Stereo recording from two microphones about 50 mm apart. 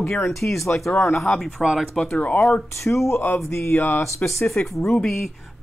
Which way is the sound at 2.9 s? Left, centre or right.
Left.